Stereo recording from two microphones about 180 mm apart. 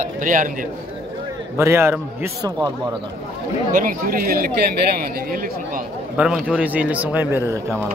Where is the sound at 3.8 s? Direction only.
50° right (ahead or behind).